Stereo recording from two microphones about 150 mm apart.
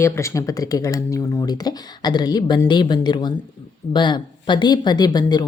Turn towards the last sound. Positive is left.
turn(degrees=25)  # may be behind; listen again after turning